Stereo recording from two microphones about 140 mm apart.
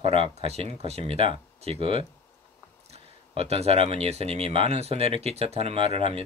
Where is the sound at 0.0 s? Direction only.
40° right (ahead or behind).